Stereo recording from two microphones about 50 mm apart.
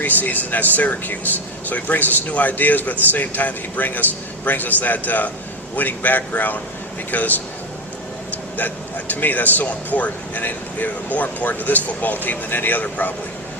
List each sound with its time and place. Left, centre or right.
0.0 s speech: left
8.5 s speech: left